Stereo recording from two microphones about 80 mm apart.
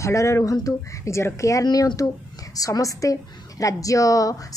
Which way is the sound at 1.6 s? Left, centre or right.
Left.